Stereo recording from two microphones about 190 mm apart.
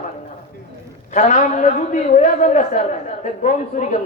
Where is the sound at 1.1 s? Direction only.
40° left (ahead or behind).